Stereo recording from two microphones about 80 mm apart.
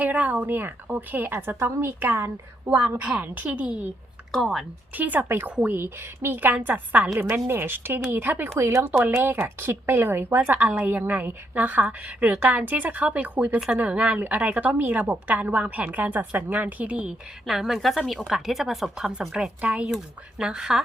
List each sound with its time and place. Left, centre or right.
0.0 s a woman's voice: centre
4.3 s speech: centre
4.9 s a woman's voice: right
8.5 s a woman's voice: right; by 17.2 s centre
17.4 s a woman's voice: centre